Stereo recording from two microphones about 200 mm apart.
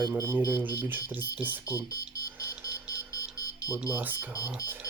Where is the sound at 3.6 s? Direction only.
15° left (ahead or behind).